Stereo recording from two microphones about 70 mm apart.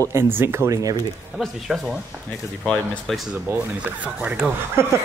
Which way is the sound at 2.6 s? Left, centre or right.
Centre.